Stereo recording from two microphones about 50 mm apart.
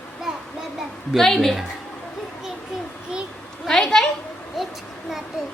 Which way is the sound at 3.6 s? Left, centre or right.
Centre.